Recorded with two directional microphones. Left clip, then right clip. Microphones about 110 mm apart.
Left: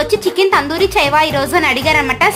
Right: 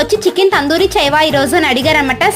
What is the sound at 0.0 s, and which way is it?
A woman's voice, 35° right (ahead or behind).